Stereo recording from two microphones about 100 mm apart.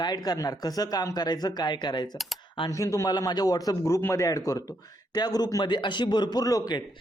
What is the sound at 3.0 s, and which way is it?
Speech, 45° left (ahead or behind).